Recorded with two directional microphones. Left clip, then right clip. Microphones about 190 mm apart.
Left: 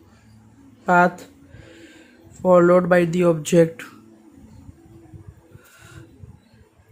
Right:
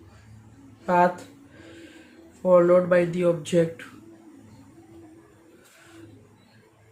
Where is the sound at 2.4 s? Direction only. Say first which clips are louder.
Left 3 dB; 55° left (ahead or behind).